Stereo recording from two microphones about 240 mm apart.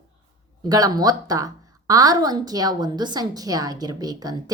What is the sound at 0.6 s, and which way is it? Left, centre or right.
Speech, centre.